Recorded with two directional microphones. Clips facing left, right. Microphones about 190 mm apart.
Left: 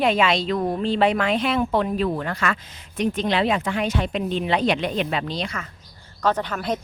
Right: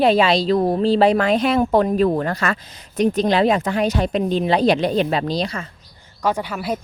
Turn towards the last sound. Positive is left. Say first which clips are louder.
# right 1 dB
turn(degrees=-5)  # may be behind; listen again after turning